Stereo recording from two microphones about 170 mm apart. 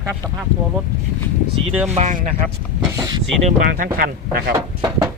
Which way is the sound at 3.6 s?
55° right (ahead or behind).